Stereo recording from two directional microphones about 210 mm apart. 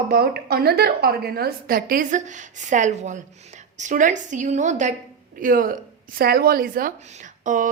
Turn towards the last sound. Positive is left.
turn(degrees=-40)  # may be behind; listen again after turning